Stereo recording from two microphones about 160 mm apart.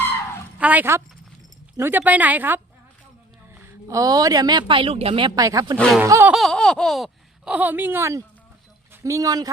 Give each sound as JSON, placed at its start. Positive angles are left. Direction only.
{"t": 0.0, "sound": "a sound", "side_deg": 15}
{"t": 0.6, "sound": "speech", "side_deg": -10}
{"t": 5.7, "sound": "speech", "side_deg": 5}
{"t": 6.0, "sound": "speech", "side_deg": -15}
{"t": 6.3, "sound": "speech", "side_deg": 5}